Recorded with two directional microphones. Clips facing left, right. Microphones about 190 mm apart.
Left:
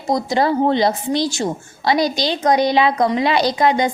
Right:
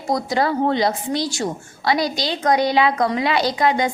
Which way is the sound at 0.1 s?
25° left (ahead or behind).